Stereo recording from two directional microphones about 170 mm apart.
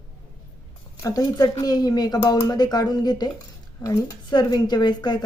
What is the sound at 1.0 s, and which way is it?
Speech, 20° left (ahead or behind).